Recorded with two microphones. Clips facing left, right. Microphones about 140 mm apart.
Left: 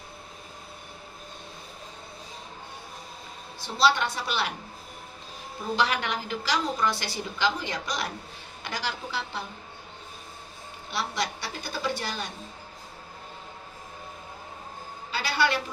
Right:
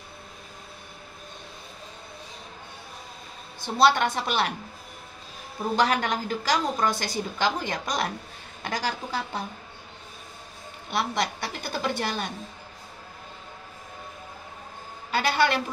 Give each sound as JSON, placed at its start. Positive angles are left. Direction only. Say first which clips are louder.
{"t": 3.6, "sound": "a woman's voice", "louder": "right 3 dB", "side_deg": -50}
{"t": 5.8, "sound": "a woman's voice", "louder": "right 4 dB", "side_deg": -45}
{"t": 10.9, "sound": "a woman's voice", "louder": "right 4 dB", "side_deg": -55}
{"t": 15.0, "sound": "a sound", "louder": "right 3 dB", "side_deg": -50}